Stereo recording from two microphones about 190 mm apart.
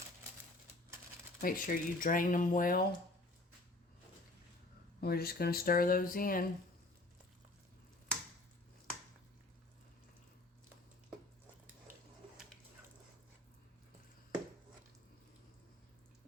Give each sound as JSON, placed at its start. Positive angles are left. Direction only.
{"t": 1.4, "sound": "speech", "side_deg": 50}
{"t": 4.9, "sound": "speech", "side_deg": 55}